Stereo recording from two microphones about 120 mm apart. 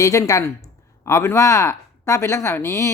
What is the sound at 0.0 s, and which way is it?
Speech, 25° left (ahead or behind).